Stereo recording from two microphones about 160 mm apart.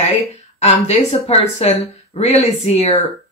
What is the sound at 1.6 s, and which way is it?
Speech, 40° left (ahead or behind).